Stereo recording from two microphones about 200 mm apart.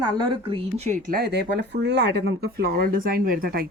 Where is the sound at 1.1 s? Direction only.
50° right (ahead or behind).